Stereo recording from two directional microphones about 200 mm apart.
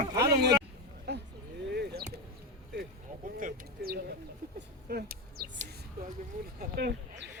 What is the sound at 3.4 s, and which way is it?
Bird, 50° right (ahead or behind).